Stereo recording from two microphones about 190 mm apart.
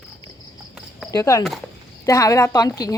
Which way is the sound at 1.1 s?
15° left (ahead or behind).